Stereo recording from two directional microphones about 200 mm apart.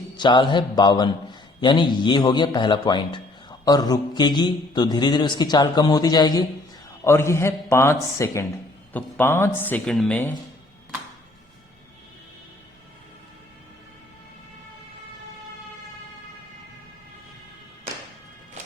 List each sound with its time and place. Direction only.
0.2 s a man's voice: 25° left (ahead or behind); by 10.3 s 5° left (ahead or behind)